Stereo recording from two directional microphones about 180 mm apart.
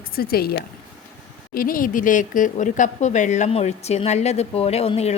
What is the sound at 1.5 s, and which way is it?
Speech, 50° left (ahead or behind).